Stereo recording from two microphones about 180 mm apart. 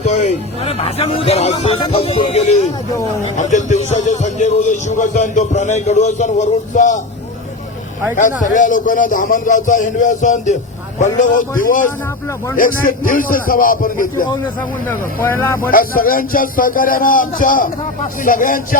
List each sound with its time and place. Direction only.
0.0 s a man's voice: 40° left (ahead or behind)
8.1 s a man's voice: 45° left (ahead or behind)
14.8 s speech: 10° left (ahead or behind)
15.7 s a man's voice: 50° left (ahead or behind)